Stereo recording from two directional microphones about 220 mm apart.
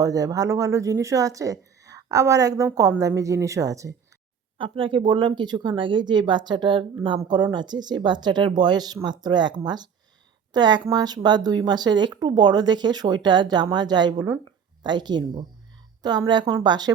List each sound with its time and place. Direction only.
0.0 s speech: 15° right (ahead or behind)